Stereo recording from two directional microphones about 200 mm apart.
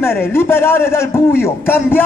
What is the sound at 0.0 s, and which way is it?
A man's voice, 10° left (ahead or behind).